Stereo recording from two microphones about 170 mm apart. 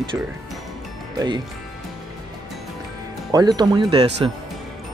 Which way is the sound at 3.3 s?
20° right (ahead or behind).